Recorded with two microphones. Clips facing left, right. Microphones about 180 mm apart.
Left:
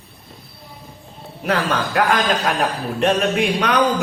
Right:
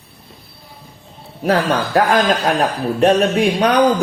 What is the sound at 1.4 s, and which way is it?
Speech, 35° right (ahead or behind).